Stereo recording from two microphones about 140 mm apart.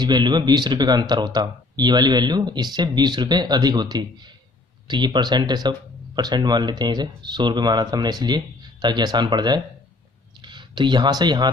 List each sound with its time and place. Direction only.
0.0 s speech: 30° right (ahead or behind)